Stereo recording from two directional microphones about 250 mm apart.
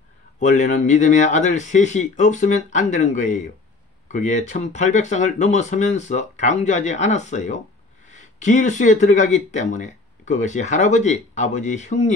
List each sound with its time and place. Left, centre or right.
0.4 s speech: left